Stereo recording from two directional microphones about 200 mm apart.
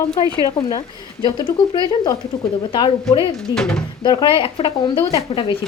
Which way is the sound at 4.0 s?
20° left (ahead or behind).